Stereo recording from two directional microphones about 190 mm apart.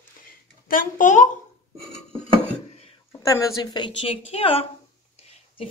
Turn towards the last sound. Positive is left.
turn(degrees=30)  # may be behind; listen again after turning